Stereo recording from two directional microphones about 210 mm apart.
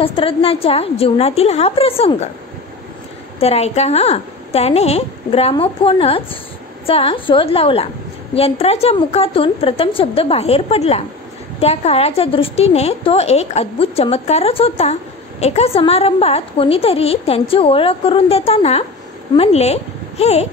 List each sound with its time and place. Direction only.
0.0 s a woman's voice: 25° left (ahead or behind)
3.3 s a woman's voice: 30° left (ahead or behind)